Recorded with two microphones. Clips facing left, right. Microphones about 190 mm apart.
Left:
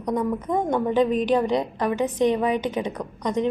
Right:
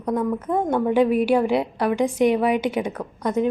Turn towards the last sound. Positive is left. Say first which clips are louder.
# right 2 dB
turn(degrees=-5)  # may be behind; listen again after turning